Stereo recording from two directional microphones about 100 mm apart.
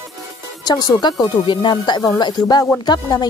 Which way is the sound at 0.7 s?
45° left (ahead or behind).